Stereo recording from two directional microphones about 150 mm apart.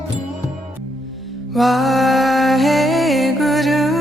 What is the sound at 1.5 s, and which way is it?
Music, centre (ahead or behind).